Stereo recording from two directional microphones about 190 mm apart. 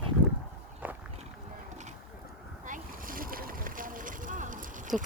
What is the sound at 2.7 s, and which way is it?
Boat, 45° right (ahead or behind).